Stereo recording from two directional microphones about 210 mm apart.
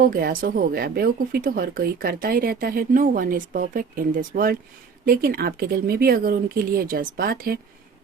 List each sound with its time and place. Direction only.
0.0 s a woman's voice: 45° right (ahead or behind)